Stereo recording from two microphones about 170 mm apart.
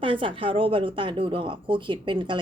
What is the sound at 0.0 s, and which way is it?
Speech, 30° right (ahead or behind).